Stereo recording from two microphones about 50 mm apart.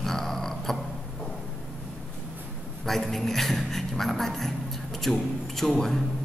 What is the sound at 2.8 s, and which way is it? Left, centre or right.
A man's voice, centre.